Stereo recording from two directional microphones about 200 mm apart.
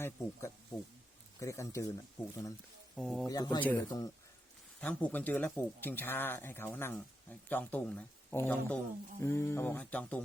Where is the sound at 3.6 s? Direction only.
10° left (ahead or behind).